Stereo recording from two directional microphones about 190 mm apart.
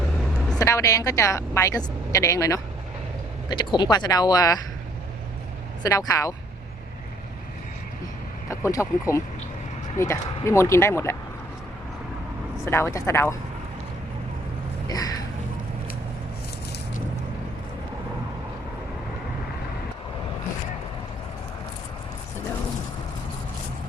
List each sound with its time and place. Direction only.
0.3 s vehicle: 5° left (ahead or behind)
0.6 s a woman's voice: 15° left (ahead or behind)
5.8 s a woman's voice: 20° left (ahead or behind)
8.4 s a woman's voice: 15° left (ahead or behind)
12.6 s a woman's voice: 15° left (ahead or behind)
14.8 s a sound: 20° left (ahead or behind)